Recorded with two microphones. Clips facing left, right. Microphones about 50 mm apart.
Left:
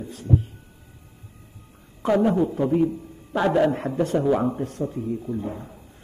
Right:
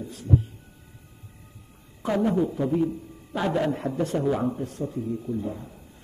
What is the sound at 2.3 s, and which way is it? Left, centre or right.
Speech, left.